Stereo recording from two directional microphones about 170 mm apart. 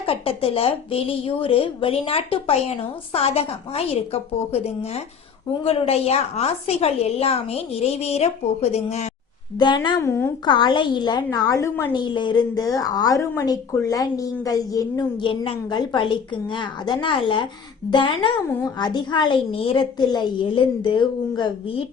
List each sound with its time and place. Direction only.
0.0 s a woman's voice: 35° left (ahead or behind)
9.6 s a woman's voice: 25° left (ahead or behind)
10.0 s a woman's voice: 15° left (ahead or behind)
10.4 s a woman's voice: 25° left (ahead or behind)
11.9 s a woman's voice: 25° left (ahead or behind)